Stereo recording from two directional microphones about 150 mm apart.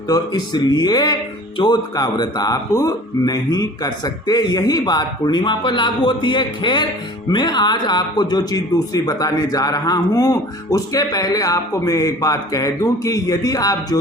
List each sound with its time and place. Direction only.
0.1 s speech: 30° left (ahead or behind)